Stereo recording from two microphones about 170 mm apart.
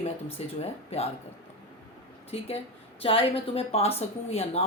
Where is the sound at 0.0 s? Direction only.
35° left (ahead or behind).